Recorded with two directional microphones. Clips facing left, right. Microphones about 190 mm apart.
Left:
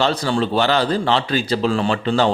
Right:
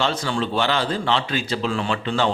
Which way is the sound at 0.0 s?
35° left (ahead or behind).